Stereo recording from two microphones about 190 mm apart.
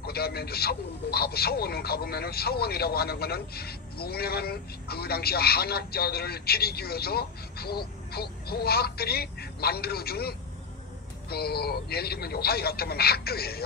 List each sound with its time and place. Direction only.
0.0 s speech: 55° left (ahead or behind)